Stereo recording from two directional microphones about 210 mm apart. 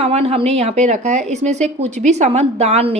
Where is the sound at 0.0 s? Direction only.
30° right (ahead or behind).